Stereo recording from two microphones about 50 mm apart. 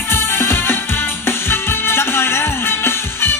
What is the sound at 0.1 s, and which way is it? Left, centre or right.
Music, left.